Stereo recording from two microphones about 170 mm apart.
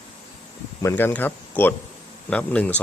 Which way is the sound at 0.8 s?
15° left (ahead or behind).